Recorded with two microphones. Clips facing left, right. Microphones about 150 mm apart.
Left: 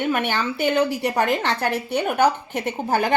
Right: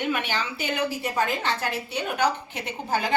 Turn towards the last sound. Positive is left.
turn(degrees=55)  # may be behind; listen again after turning